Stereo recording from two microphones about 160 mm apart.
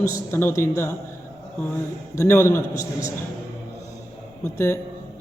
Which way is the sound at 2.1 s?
15° left (ahead or behind).